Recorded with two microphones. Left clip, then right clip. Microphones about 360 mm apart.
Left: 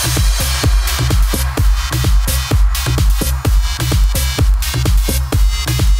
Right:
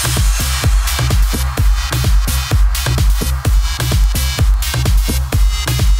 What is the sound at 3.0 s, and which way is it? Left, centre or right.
Music, centre.